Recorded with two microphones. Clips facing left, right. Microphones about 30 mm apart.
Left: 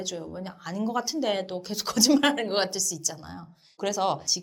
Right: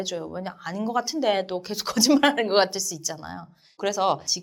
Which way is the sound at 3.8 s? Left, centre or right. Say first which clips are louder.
Right 3 dB; centre.